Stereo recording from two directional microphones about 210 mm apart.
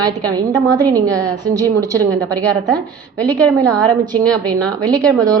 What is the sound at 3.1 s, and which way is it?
A woman's voice, 5° left (ahead or behind).